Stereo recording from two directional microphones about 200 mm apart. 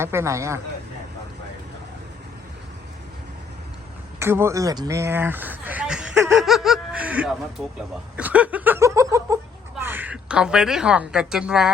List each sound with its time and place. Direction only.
0.0 s speech: 15° right (ahead or behind)
4.2 s speech: 10° right (ahead or behind)
6.3 s music: centre (ahead or behind)
8.1 s speech: 5° right (ahead or behind)
9.8 s a sound: 10° right (ahead or behind)
11.1 s music: 5° right (ahead or behind)